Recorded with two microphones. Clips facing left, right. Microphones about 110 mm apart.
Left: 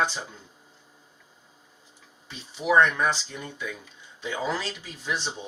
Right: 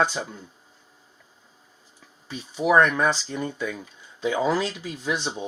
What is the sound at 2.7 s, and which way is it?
Speech, 45° right (ahead or behind).